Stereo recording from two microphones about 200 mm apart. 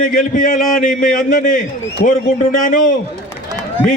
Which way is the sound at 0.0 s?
40° left (ahead or behind).